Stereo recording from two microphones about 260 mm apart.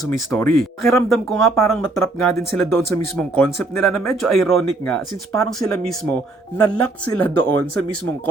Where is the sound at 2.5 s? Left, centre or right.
Centre.